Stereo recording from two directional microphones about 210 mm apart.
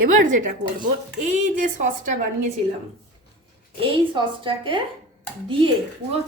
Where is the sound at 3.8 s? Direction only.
25° right (ahead or behind).